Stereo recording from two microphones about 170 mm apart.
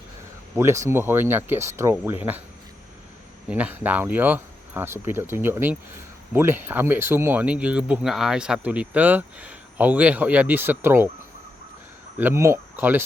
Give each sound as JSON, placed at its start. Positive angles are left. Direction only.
{"t": 0.5, "sound": "speech", "side_deg": -15}
{"t": 3.5, "sound": "speech", "side_deg": -10}
{"t": 12.2, "sound": "speech", "side_deg": -15}